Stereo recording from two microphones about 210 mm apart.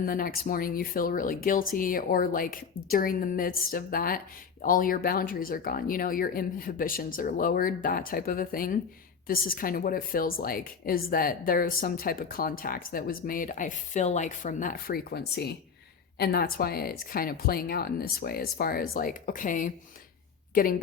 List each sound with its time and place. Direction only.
0.0 s a woman's voice: 45° left (ahead or behind)